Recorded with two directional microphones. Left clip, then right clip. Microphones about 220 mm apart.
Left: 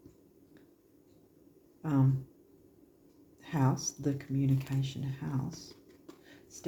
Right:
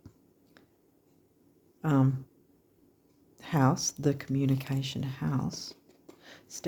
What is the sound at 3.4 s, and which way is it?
Speech, 50° right (ahead or behind).